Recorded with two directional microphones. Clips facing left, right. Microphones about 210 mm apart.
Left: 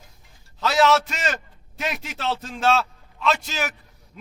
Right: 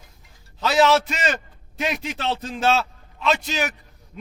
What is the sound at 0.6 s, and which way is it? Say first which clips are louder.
A man's voice: right 1 dB; centre (ahead or behind).